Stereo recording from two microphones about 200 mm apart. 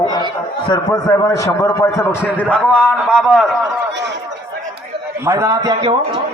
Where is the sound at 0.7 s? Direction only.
20° left (ahead or behind).